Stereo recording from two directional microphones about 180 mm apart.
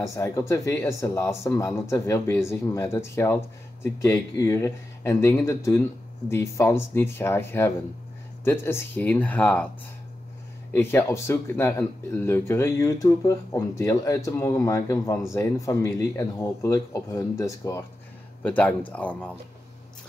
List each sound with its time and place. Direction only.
0.0 s speech: 15° left (ahead or behind)
10.7 s speech: 15° left (ahead or behind)